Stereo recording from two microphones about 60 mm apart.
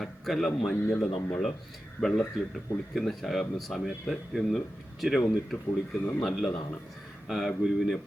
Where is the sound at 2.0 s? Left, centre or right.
Centre.